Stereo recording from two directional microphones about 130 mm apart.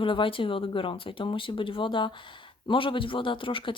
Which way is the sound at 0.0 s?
40° left (ahead or behind).